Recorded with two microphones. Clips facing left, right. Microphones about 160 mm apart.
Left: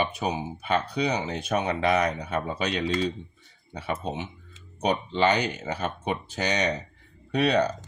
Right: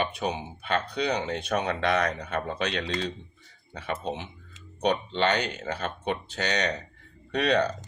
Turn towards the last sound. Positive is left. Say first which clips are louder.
# left 1 dB
turn(degrees=10)  # may be behind; listen again after turning